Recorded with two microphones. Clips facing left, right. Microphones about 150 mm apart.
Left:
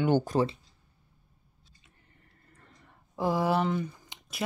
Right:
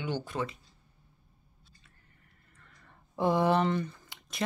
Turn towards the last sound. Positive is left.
turn(degrees=15)  # may be behind; listen again after turning